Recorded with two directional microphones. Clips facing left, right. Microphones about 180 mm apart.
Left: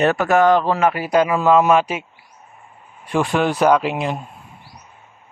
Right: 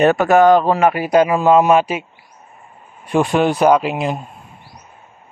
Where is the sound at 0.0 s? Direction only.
20° right (ahead or behind).